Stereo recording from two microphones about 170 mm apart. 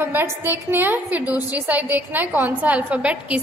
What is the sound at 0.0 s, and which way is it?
A woman's voice, 15° right (ahead or behind).